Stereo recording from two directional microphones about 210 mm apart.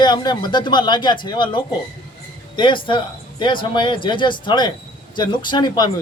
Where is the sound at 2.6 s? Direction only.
25° left (ahead or behind).